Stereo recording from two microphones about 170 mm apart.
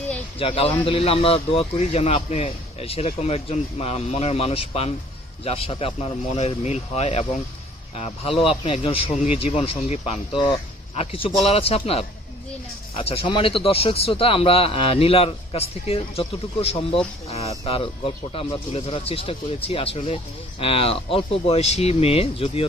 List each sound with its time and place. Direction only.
0.3 s a man's voice: 35° left (ahead or behind)